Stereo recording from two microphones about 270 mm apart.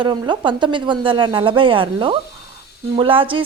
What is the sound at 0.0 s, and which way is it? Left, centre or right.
A woman's voice, centre.